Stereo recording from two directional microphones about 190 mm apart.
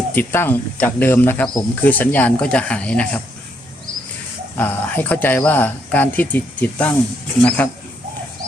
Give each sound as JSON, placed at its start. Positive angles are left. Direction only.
{"t": 0.1, "sound": "speech", "side_deg": 10}
{"t": 4.5, "sound": "speech", "side_deg": 10}